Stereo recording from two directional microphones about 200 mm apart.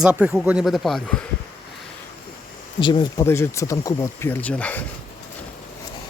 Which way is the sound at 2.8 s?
20° left (ahead or behind).